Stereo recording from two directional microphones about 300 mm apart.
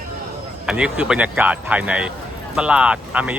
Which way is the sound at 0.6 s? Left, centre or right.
Centre.